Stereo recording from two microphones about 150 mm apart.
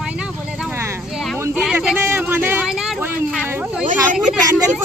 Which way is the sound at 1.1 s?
Centre (ahead or behind).